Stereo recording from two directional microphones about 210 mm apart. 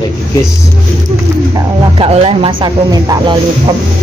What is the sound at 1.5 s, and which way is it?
Speech, 25° right (ahead or behind).